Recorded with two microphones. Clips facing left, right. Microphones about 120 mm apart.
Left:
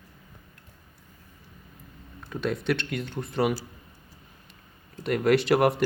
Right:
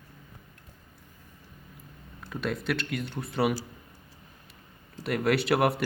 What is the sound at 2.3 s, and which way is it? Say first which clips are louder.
Speech: left 3 dB; centre (ahead or behind).